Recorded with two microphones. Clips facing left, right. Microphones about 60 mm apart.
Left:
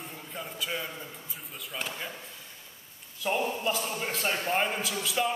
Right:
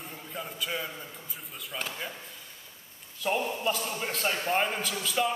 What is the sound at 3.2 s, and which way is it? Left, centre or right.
A man's voice, centre.